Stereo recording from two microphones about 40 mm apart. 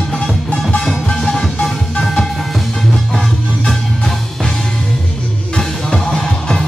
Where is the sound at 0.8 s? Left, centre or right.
Centre.